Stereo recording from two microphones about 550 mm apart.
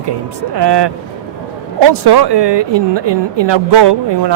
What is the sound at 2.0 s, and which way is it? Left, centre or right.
Speech, right.